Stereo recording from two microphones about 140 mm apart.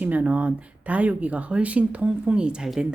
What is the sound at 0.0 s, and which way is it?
Speech, 10° right (ahead or behind).